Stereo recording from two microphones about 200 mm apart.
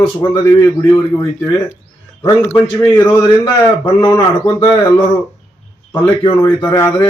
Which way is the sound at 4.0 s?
20° left (ahead or behind).